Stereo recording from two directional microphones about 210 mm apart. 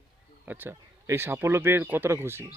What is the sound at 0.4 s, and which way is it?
Speech, 10° right (ahead or behind).